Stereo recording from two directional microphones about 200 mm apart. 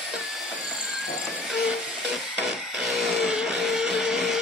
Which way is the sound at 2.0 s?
Centre (ahead or behind).